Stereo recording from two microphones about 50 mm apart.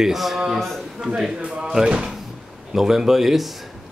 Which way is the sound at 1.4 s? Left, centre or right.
Centre.